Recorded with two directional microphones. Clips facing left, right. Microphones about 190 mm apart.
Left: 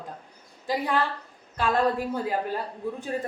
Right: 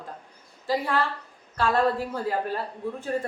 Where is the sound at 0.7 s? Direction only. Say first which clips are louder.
Even; 15° left (ahead or behind).